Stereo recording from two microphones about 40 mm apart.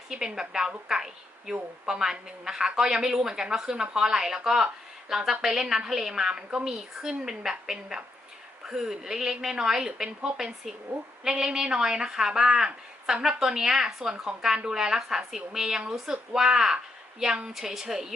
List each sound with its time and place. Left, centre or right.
0.3 s a woman's voice: centre
15.8 s a woman's voice: right